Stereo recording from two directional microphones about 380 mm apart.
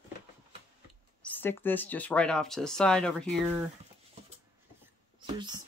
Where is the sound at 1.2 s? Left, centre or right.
Centre.